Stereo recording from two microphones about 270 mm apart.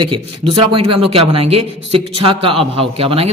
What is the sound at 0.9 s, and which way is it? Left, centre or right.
A man's voice, right.